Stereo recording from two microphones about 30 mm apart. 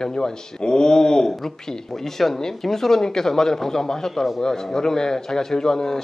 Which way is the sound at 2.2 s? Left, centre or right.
Centre.